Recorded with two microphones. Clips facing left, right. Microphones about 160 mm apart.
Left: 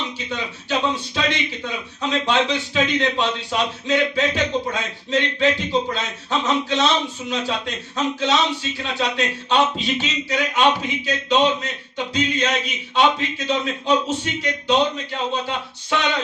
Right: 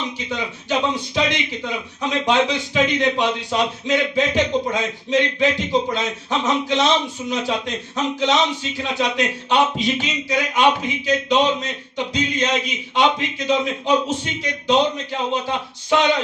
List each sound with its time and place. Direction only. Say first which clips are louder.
0.3 s a man's voice: right 2 dB; 15° right (ahead or behind)
15.3 s a man's voice: right 2 dB; 15° right (ahead or behind)